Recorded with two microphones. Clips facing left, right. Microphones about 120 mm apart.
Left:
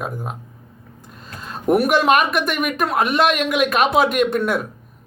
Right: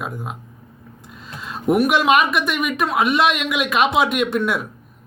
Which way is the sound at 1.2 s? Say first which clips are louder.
Even; centre (ahead or behind).